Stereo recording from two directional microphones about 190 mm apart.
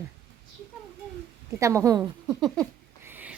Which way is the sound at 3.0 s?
10° right (ahead or behind).